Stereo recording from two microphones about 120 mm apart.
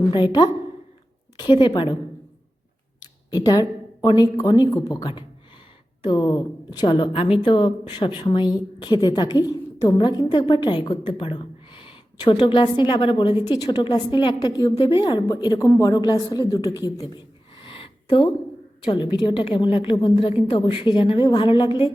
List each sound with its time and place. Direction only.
0.1 s a woman's voice: 40° left (ahead or behind)
3.0 s speech: 30° left (ahead or behind)
6.0 s a woman's voice: 40° left (ahead or behind)
17.7 s a sound: 45° left (ahead or behind)
18.9 s a woman's voice: 40° left (ahead or behind)